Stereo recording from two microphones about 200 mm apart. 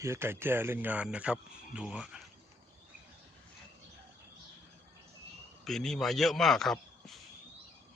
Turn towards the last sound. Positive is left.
turn(degrees=0)  # may be behind; listen again after turning